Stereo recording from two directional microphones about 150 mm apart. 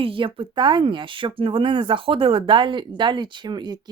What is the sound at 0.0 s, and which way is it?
Speech, 35° right (ahead or behind).